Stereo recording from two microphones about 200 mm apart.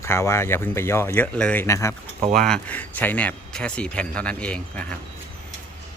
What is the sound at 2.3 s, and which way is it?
Speech, centre (ahead or behind).